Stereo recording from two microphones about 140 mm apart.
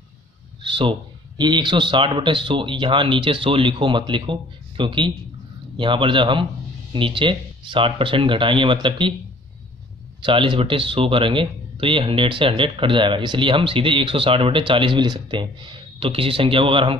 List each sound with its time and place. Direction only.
0.6 s a sound: 40° right (ahead or behind)
1.4 s speech: 30° right (ahead or behind)
10.2 s speech: 35° right (ahead or behind)